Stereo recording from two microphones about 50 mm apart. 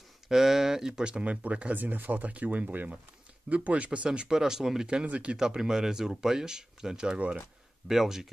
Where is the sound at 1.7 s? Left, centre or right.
Right.